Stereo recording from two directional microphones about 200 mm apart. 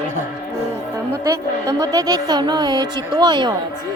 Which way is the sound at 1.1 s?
15° right (ahead or behind).